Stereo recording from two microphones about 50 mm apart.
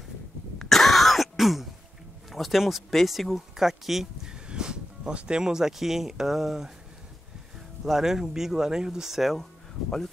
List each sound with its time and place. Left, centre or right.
0.6 s cough: centre
2.3 s speech: centre
4.5 s music: centre
5.4 s speech: centre
7.8 s speech: centre